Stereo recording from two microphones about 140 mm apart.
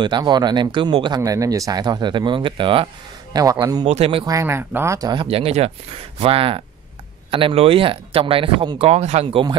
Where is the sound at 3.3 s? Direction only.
25° right (ahead or behind).